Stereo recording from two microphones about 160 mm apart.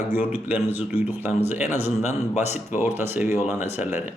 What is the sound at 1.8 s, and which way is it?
Speech, 45° left (ahead or behind).